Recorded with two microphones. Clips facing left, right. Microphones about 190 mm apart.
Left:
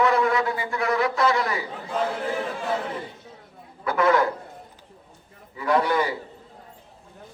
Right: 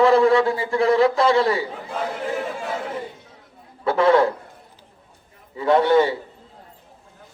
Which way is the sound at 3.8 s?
30° right (ahead or behind).